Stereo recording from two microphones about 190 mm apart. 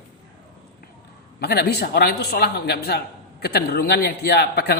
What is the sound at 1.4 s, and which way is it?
A man's voice, 55° left (ahead or behind).